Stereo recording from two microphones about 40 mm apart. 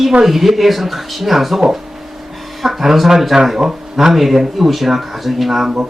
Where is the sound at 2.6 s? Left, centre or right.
Centre.